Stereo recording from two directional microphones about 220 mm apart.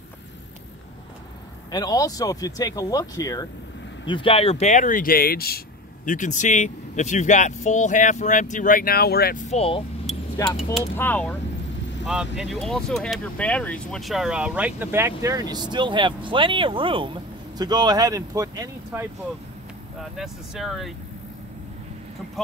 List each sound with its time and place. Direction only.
1.7 s speech: 15° left (ahead or behind)
10.8 s speech: 10° left (ahead or behind)
12.1 s speech: 5° right (ahead or behind)
20.0 s speech: centre (ahead or behind)